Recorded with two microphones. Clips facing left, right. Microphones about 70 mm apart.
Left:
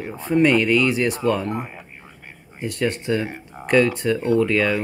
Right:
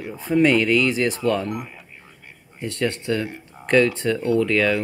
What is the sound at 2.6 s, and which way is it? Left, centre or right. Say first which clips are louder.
Speech: left 1 dB; centre.